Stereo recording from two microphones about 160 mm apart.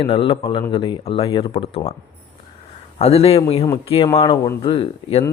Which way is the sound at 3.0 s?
40° left (ahead or behind).